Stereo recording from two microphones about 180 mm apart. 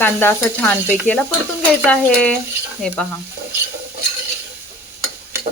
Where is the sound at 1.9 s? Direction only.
5° left (ahead or behind).